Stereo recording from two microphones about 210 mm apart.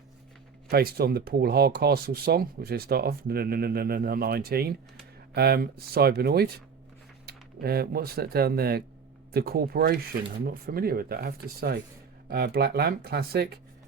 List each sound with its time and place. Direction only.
0.7 s speech: 45° right (ahead or behind)